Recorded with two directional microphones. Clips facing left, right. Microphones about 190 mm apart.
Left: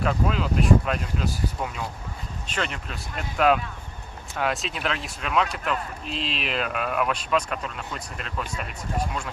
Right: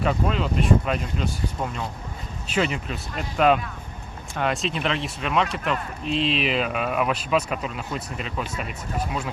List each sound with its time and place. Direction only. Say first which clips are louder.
0.0 s speech: right 1 dB; centre (ahead or behind)